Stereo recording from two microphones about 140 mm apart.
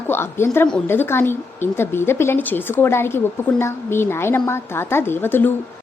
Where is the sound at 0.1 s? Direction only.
15° left (ahead or behind).